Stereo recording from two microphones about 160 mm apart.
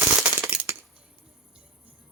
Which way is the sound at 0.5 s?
15° right (ahead or behind).